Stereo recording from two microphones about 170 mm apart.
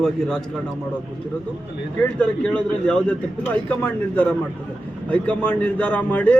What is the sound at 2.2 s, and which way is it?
A man's voice, 5° left (ahead or behind).